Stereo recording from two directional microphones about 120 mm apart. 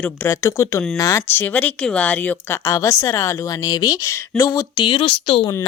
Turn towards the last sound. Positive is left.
turn(degrees=45)  # may be behind; listen again after turning